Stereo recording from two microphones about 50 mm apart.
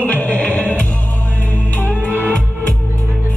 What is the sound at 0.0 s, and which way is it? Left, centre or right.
Music, left.